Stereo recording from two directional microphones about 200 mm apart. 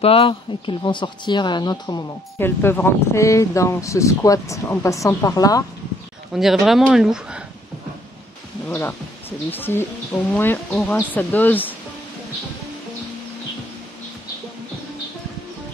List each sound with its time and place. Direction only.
0.0 s speech: 30° left (ahead or behind)
6.3 s speech: centre (ahead or behind)
8.6 s speech: 15° left (ahead or behind)